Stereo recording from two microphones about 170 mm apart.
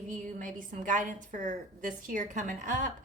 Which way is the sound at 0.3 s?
50° right (ahead or behind).